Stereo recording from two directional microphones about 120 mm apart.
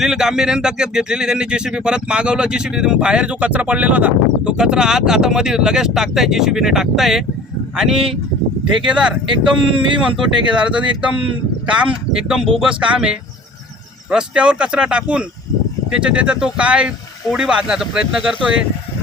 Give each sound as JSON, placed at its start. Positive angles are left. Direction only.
{"t": 0.0, "sound": "speech", "side_deg": -5}
{"t": 9.3, "sound": "speech", "side_deg": -45}
{"t": 10.5, "sound": "speech", "side_deg": -10}